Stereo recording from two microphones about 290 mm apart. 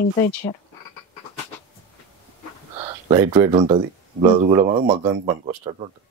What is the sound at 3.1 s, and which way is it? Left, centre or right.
Speech, centre.